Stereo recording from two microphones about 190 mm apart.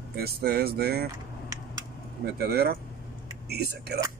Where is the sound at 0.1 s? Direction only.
55° right (ahead or behind).